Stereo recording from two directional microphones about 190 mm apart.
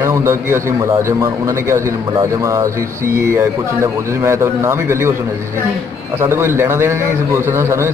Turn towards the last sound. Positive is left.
turn(degrees=-15)  # may be behind; listen again after turning